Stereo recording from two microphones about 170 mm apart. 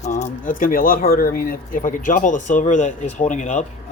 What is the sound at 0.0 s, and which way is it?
Speech, 45° left (ahead or behind).